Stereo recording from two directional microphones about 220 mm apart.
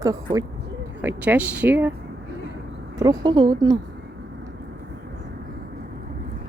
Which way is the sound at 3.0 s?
20° right (ahead or behind).